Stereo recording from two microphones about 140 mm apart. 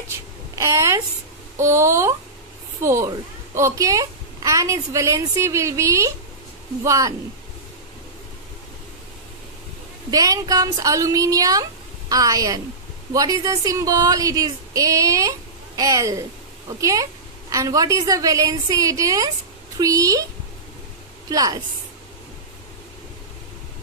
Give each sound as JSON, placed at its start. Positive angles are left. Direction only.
{"t": 0.6, "sound": "speech", "side_deg": -20}
{"t": 10.1, "sound": "speech", "side_deg": -25}
{"t": 21.3, "sound": "speech", "side_deg": -25}